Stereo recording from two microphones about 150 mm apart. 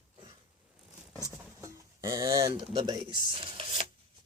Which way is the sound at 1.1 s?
20° right (ahead or behind).